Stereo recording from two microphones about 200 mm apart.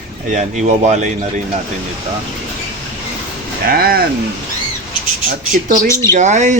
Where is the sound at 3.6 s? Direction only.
50° right (ahead or behind).